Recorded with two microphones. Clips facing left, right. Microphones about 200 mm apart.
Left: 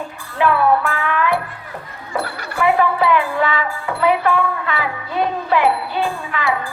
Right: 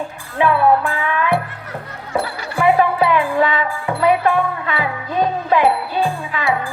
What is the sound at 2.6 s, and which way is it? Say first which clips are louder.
Music: right 2 dB; 25° right (ahead or behind).